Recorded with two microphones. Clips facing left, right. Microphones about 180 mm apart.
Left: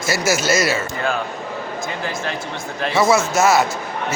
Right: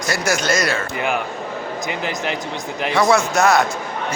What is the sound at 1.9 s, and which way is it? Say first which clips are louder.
Speech: right 3 dB; 15° right (ahead or behind).